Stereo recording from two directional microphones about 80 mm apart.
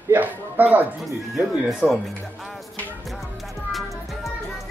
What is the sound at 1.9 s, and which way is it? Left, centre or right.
Speech, centre.